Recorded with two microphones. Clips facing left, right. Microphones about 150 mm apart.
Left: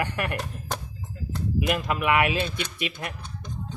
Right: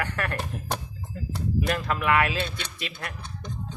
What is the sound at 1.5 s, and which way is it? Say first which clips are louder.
Speech: left 1 dB; 15° left (ahead or behind).